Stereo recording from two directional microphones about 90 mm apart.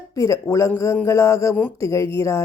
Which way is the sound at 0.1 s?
35° left (ahead or behind).